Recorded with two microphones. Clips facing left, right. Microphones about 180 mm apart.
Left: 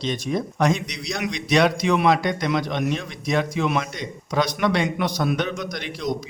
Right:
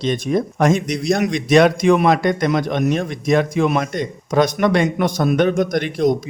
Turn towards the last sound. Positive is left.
turn(degrees=-50)  # may be behind; listen again after turning